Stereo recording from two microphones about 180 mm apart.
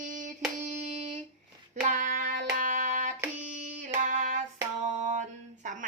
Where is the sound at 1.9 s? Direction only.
45° right (ahead or behind).